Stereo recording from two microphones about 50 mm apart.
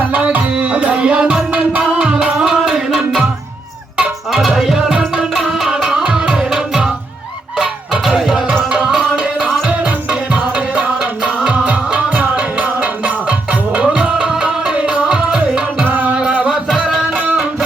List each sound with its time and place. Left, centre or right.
0.1 s music: right; by 3.2 s centre
4.3 s music: centre
8.0 s music: centre
8.8 s tabla: centre
9.6 s music: right
15.8 s music: right